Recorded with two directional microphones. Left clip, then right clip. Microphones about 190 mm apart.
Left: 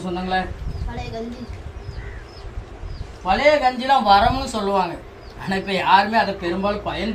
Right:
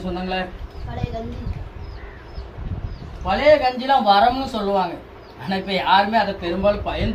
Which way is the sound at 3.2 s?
15° left (ahead or behind).